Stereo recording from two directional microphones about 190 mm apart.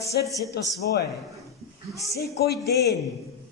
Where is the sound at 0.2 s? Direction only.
60° left (ahead or behind).